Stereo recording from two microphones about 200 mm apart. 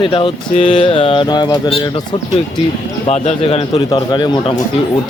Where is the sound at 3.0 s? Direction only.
30° left (ahead or behind).